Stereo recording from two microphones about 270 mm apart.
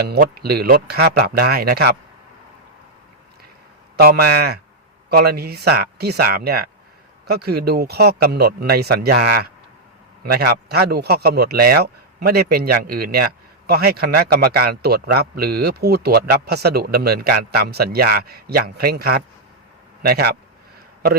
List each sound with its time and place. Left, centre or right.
0.1 s speech: right
3.9 s speech: right